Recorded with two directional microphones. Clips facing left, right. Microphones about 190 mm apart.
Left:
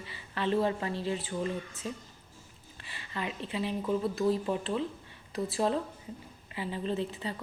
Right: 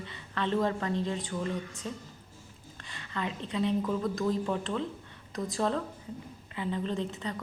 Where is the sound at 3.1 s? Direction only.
10° left (ahead or behind).